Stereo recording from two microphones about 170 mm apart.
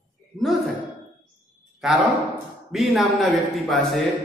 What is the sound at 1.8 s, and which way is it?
A man's voice, centre (ahead or behind).